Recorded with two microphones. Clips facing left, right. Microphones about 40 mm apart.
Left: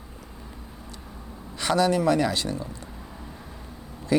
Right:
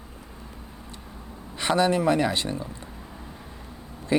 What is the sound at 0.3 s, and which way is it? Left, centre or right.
Vehicle, centre.